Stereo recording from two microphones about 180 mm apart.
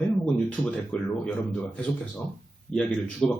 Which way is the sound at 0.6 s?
5° left (ahead or behind).